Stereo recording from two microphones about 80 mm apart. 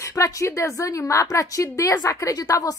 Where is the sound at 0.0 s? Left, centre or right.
Left.